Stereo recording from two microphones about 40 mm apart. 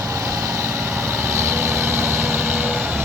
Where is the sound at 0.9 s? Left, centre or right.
Right.